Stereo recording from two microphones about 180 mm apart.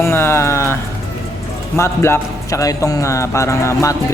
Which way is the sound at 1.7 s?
15° left (ahead or behind).